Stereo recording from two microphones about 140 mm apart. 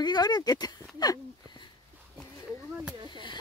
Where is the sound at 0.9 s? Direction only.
25° left (ahead or behind).